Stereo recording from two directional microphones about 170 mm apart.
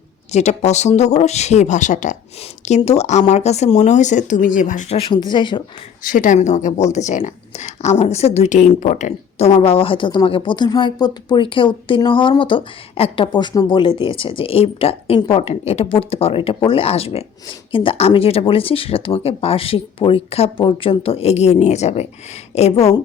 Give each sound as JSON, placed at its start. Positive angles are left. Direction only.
{"t": 0.3, "sound": "speech", "side_deg": 40}
{"t": 4.9, "sound": "speech", "side_deg": 30}
{"t": 6.0, "sound": "speech", "side_deg": 50}